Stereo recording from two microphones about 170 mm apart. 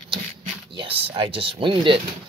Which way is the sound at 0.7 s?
35° right (ahead or behind).